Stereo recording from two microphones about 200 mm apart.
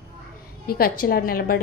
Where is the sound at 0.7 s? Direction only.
50° left (ahead or behind).